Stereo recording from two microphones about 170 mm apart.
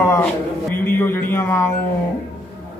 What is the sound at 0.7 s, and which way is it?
A man's voice, 15° left (ahead or behind).